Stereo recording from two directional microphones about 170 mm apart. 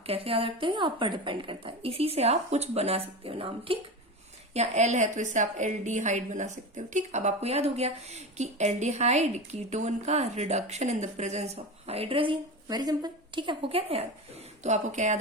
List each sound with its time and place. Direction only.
0.1 s a woman's voice: 35° right (ahead or behind)